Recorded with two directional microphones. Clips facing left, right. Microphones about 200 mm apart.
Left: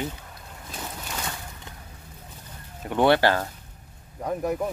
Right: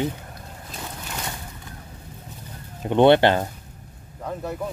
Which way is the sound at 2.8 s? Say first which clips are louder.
Right 5 dB; 25° right (ahead or behind).